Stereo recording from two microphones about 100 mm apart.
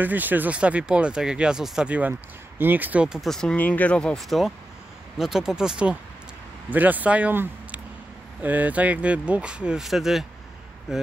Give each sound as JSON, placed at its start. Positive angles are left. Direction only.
{"t": 0.0, "sound": "speech", "side_deg": -20}
{"t": 3.2, "sound": "speech", "side_deg": 5}
{"t": 3.5, "sound": "speech", "side_deg": 15}